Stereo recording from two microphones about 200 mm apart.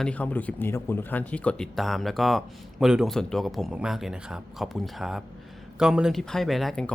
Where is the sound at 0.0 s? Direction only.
5° left (ahead or behind).